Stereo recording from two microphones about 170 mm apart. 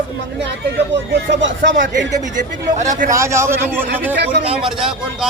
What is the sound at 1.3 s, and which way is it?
Speech, 90° right.